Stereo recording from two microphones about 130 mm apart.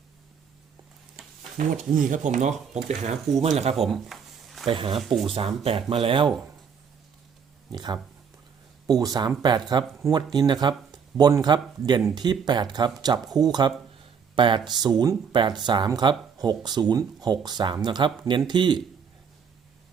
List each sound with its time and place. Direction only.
1.5 s speech: 80° right; by 3.8 s 55° right (ahead or behind)
3.8 s a sound: centre (ahead or behind)
4.7 s speech: 40° right (ahead or behind)
4.9 s speech: centre (ahead or behind)
5.6 s speech: 45° right (ahead or behind)
7.7 s speech: 35° right (ahead or behind)
14.0 s a sound: 40° right (ahead or behind)
14.8 s speech: 30° right (ahead or behind)